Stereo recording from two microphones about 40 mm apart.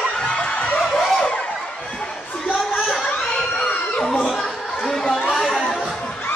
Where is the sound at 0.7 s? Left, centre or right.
Centre.